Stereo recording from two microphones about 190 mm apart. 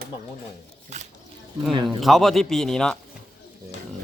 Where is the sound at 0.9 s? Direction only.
40° right (ahead or behind).